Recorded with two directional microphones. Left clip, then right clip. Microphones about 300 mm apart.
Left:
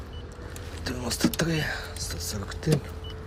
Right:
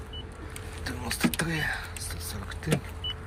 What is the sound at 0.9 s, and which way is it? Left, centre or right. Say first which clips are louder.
Speech: left 2 dB; centre.